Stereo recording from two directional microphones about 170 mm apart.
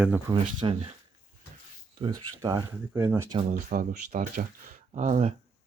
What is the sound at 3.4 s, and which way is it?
Speech, 45° right (ahead or behind).